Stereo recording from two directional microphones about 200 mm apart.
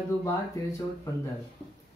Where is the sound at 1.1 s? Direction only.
15° left (ahead or behind).